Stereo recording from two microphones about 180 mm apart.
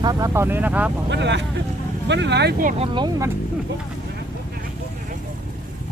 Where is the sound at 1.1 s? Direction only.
75° right (ahead or behind).